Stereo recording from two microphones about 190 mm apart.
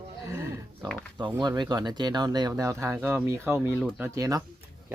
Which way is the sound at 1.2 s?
25° right (ahead or behind).